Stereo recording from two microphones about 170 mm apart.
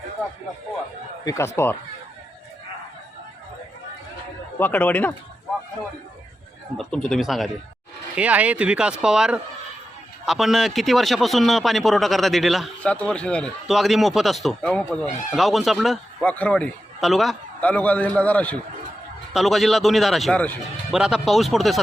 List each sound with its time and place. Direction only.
1.2 s speech: 20° left (ahead or behind)
4.6 s a man's voice: 10° left (ahead or behind)
6.7 s a man's voice: 5° left (ahead or behind)
20.9 s speech: 5° right (ahead or behind)